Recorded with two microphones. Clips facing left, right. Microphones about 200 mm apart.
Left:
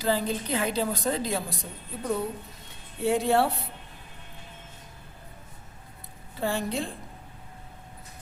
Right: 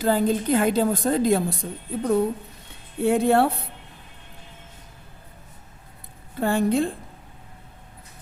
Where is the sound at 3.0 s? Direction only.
55° right (ahead or behind).